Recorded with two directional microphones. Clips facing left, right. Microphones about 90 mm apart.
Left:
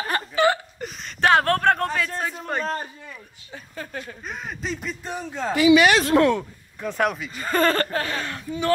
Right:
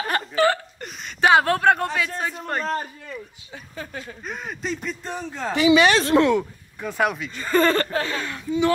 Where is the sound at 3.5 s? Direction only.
45° left (ahead or behind).